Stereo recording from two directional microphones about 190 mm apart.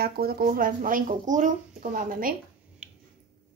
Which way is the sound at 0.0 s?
55° right (ahead or behind).